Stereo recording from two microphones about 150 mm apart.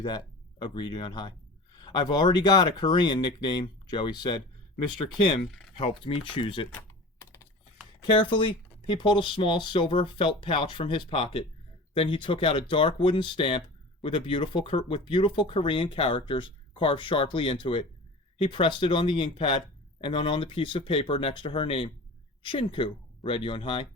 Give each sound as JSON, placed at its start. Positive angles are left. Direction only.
{"t": 0.6, "sound": "speech", "side_deg": 30}
{"t": 6.1, "sound": "speech", "side_deg": 35}
{"t": 8.1, "sound": "speech", "side_deg": 35}